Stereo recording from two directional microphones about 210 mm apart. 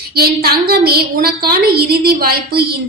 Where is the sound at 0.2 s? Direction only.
45° right (ahead or behind).